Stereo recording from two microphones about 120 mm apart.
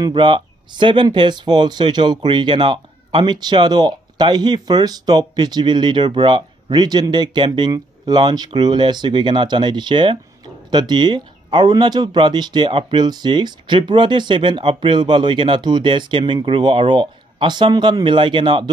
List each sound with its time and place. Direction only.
0.0 s speech: 40° right (ahead or behind)